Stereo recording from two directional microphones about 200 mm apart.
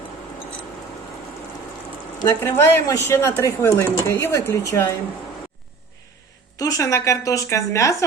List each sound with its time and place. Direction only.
2.1 s speech: 15° left (ahead or behind)
6.6 s speech: 15° left (ahead or behind)